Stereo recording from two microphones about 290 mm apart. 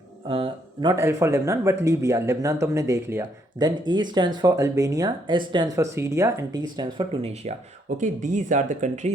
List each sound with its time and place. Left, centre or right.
0.3 s speech: centre